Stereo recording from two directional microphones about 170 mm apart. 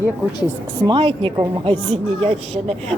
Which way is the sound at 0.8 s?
30° right (ahead or behind).